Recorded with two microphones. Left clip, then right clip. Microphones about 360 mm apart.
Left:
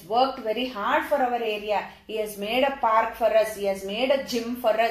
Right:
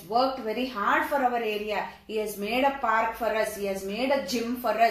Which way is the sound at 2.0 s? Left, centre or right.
Left.